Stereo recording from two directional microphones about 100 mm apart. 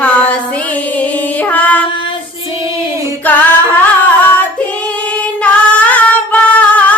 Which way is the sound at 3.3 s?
15° left (ahead or behind).